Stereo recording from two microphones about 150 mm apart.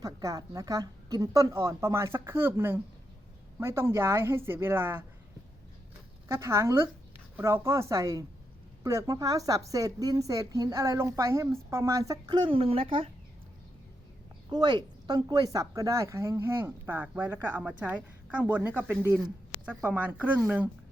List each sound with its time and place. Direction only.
0.0 s a woman's voice: 25° right (ahead or behind)
6.2 s a woman's voice: 20° right (ahead or behind); by 13.1 s 35° right (ahead or behind)
14.5 s a woman's voice: 30° right (ahead or behind); by 20.4 s 10° right (ahead or behind)